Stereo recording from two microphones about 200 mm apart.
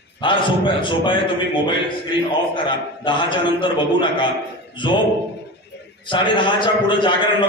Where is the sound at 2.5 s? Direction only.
25° left (ahead or behind).